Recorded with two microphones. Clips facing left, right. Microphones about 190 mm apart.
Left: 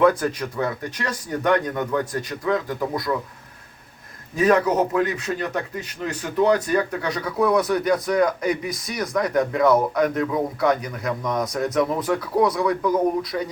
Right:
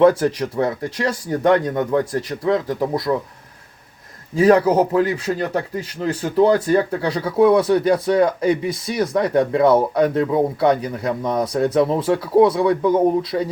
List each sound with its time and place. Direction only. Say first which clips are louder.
0.0 s a man's voice: right 4 dB; 30° right (ahead or behind)
4.4 s a man's voice: right 5 dB; 30° right (ahead or behind)